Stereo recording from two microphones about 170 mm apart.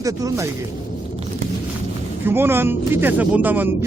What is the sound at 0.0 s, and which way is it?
Speech, 20° right (ahead or behind).